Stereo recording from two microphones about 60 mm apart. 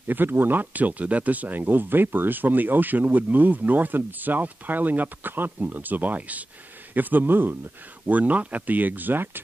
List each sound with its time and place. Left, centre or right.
0.1 s speech: right